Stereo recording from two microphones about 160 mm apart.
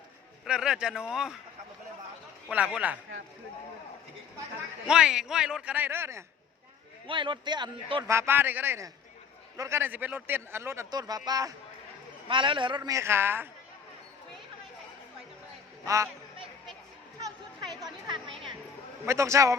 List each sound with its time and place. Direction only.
0.4 s a man's voice: 5° right (ahead or behind)
2.5 s speech: 10° right (ahead or behind)
4.9 s a man's voice: 5° right (ahead or behind)
7.1 s speech: 30° right (ahead or behind)
8.0 s a man's voice: 15° right (ahead or behind)
17.2 s a sound: 20° right (ahead or behind)
19.0 s a man's voice: 20° right (ahead or behind)